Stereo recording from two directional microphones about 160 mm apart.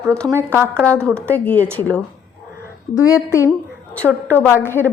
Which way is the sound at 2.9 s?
20° left (ahead or behind).